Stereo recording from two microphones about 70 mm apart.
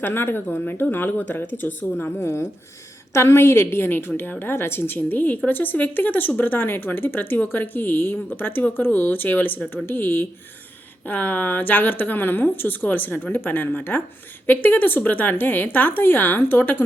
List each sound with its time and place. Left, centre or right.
0.0 s speech: left